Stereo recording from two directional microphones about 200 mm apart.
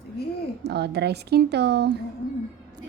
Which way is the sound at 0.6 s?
55° right (ahead or behind).